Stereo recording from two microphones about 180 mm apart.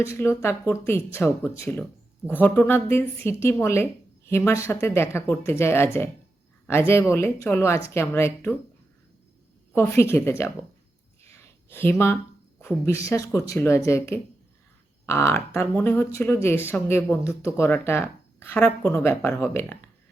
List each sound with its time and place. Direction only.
0.0 s speech: 15° left (ahead or behind)
9.7 s speech: 15° left (ahead or behind)
11.2 s a sound: 15° left (ahead or behind)
12.6 s speech: 15° left (ahead or behind)